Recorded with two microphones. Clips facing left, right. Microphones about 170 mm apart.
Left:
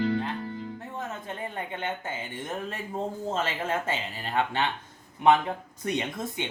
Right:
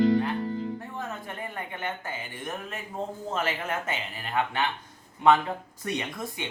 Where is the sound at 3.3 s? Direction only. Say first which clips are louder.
Even; 25° left (ahead or behind).